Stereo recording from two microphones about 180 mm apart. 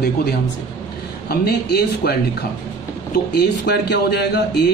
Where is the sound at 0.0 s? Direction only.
60° left (ahead or behind).